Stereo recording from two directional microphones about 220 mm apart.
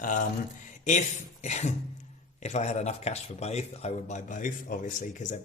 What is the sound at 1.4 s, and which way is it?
Speech, 30° left (ahead or behind).